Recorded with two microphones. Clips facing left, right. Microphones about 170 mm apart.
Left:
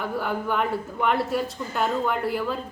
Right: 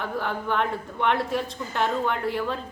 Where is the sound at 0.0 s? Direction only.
5° left (ahead or behind).